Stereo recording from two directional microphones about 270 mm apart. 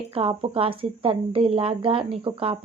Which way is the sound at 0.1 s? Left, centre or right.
Centre.